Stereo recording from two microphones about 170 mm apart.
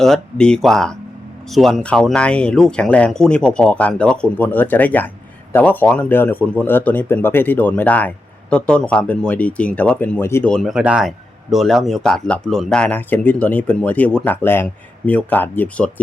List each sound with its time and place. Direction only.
0.0 s speech: 5° left (ahead or behind)
10.5 s speech: centre (ahead or behind)